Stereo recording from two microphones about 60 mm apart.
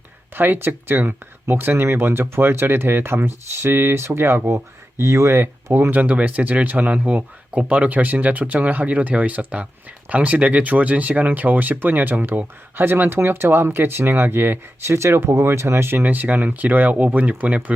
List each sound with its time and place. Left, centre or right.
0.3 s speech: right
5.9 s speech: right
14.8 s speech: right
15.9 s speech: right